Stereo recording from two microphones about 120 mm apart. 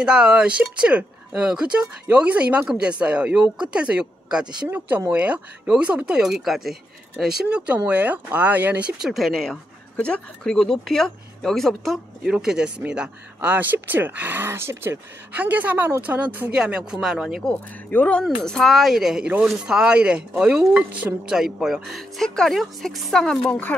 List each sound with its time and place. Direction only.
0.0 s speech: 5° right (ahead or behind)
17.5 s speech: 10° left (ahead or behind)